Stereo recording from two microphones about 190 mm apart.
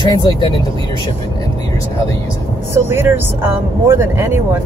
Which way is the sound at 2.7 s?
15° right (ahead or behind).